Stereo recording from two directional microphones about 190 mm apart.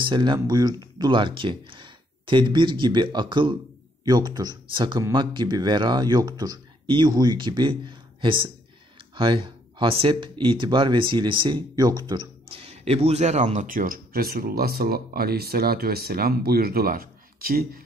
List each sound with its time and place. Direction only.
0.0 s speech: 25° right (ahead or behind); by 17.8 s 50° right (ahead or behind)